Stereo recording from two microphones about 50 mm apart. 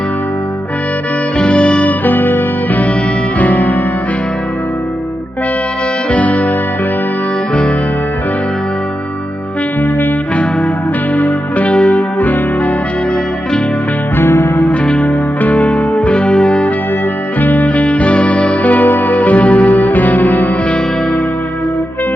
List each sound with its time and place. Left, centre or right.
1.4 s music: left
6.1 s music: left
11.1 s music: left
14.2 s music: left
14.6 s music: left
17.4 s music: left